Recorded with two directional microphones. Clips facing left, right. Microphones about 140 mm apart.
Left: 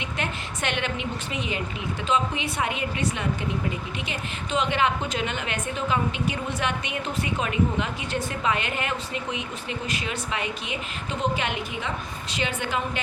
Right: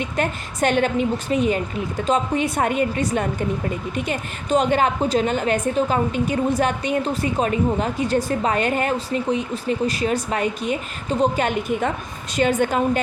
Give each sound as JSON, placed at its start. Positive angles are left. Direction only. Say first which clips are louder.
{"t": 0.0, "sound": "a woman's voice", "louder": "right 7 dB", "side_deg": -40}